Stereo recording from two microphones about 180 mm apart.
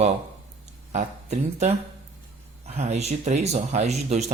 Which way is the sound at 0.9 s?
40° right (ahead or behind).